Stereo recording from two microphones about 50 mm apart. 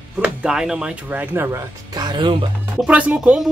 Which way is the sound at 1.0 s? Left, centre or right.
Right.